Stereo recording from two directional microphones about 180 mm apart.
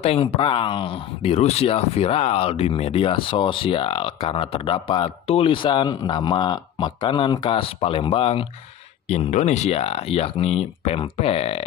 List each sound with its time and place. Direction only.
0.0 s speech: 30° left (ahead or behind)